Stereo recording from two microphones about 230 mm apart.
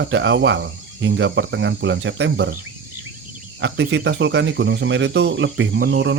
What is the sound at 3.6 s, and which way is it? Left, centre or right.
Speech, right.